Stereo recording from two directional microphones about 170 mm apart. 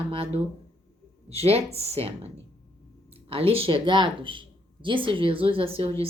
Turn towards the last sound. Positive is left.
turn(degrees=-35)  # may be behind; listen again after turning